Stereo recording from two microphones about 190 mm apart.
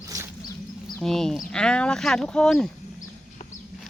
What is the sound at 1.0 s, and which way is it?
Speech, centre (ahead or behind).